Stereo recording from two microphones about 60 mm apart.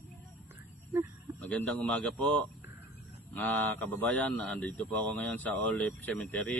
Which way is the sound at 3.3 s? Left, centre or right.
Left.